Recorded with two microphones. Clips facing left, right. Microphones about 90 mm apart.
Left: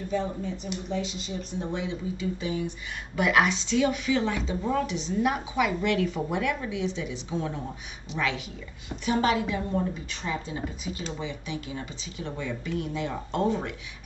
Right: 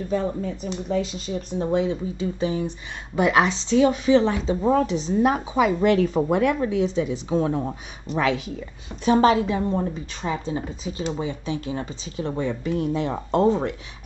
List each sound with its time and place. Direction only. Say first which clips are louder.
0.1 s speech: right 4 dB; 50° right (ahead or behind)
2.1 s speech: right 5 dB; 30° right (ahead or behind)
9.0 s speech: right 7 dB; 35° right (ahead or behind)